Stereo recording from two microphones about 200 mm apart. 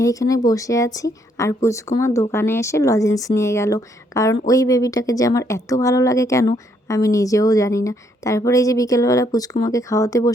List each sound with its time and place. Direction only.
0.0 s speech: 15° left (ahead or behind)